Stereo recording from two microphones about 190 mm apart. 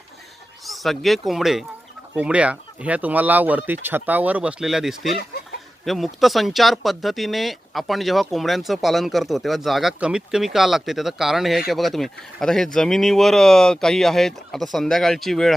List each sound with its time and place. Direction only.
0.6 s speech: centre (ahead or behind)